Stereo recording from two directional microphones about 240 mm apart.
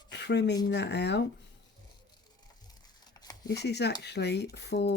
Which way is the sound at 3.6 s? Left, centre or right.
Left.